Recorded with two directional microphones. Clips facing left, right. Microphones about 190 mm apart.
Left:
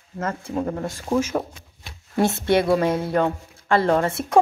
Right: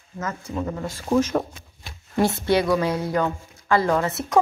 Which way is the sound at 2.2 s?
25° left (ahead or behind).